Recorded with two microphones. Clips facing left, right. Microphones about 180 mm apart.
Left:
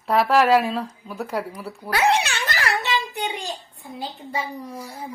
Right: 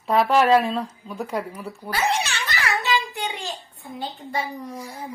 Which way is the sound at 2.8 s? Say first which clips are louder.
Right 1 dB; 20° left (ahead or behind).